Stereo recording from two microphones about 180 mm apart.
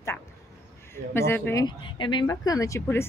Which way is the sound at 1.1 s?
15° left (ahead or behind).